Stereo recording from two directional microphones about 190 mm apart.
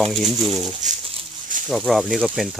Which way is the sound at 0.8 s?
40° right (ahead or behind).